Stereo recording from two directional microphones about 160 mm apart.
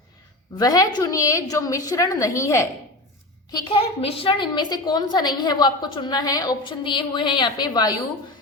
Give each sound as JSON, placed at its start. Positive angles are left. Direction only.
{"t": 0.5, "sound": "a woman's voice", "side_deg": 25}
{"t": 3.5, "sound": "a woman's voice", "side_deg": 35}